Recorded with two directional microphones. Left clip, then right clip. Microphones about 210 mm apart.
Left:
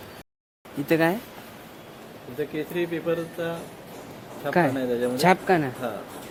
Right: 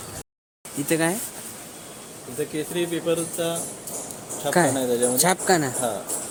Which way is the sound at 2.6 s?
15° right (ahead or behind).